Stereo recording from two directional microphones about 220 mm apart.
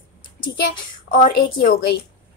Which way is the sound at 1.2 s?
50° left (ahead or behind).